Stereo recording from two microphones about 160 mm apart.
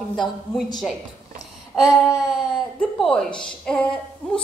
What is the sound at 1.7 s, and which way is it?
A woman's voice, centre (ahead or behind).